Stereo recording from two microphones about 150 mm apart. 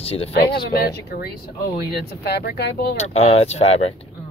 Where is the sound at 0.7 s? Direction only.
90° left.